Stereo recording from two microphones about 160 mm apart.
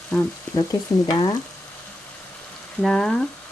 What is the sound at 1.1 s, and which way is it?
Frying, 25° left (ahead or behind).